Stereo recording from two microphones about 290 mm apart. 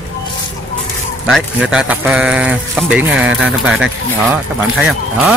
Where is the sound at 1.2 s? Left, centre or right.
Centre.